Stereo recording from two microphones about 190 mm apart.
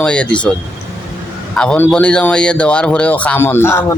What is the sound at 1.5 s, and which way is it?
A man's voice, 5° left (ahead or behind).